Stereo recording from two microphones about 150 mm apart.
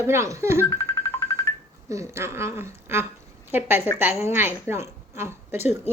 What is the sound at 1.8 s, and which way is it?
A woman's voice, 20° right (ahead or behind).